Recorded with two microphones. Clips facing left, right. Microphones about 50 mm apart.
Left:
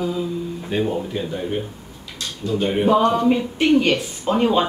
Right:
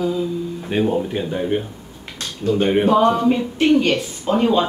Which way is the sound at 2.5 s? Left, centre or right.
Right.